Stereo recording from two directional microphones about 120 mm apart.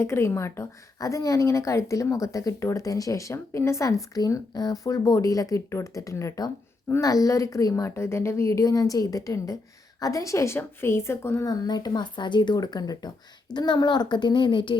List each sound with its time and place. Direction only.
0.0 s a woman's voice: 20° left (ahead or behind); by 14.8 s 45° left (ahead or behind)